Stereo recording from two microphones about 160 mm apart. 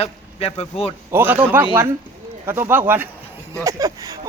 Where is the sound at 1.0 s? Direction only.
15° right (ahead or behind).